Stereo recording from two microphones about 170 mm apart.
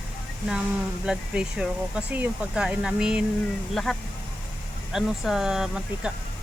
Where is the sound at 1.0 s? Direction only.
5° right (ahead or behind).